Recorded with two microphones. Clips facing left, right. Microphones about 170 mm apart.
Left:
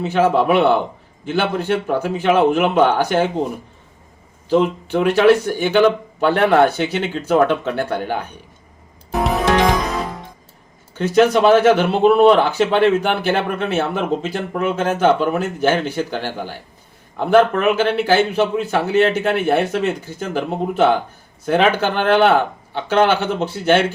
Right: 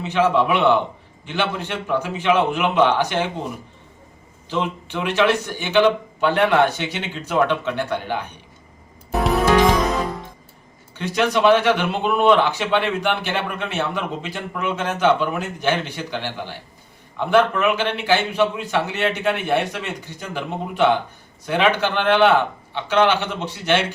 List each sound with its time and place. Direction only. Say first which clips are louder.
0.0 s a man's voice: left 3 dB; 40° left (ahead or behind)
4.4 s speech: left 8 dB; 40° left (ahead or behind)
10.9 s speech: left 7 dB; 40° left (ahead or behind)